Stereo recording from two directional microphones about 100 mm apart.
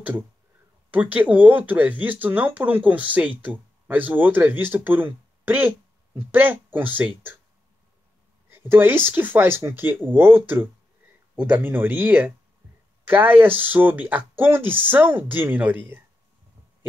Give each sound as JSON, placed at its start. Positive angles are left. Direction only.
{"t": 1.1, "sound": "speech", "side_deg": -15}
{"t": 8.5, "sound": "speech", "side_deg": -20}